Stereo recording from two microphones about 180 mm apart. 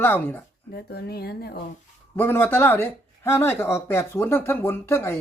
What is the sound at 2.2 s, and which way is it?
Speech, 10° left (ahead or behind).